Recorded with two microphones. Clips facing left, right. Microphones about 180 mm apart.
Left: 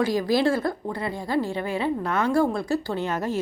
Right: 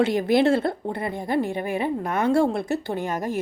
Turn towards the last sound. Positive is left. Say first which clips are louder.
# even
turn(degrees=-15)  # may be behind; listen again after turning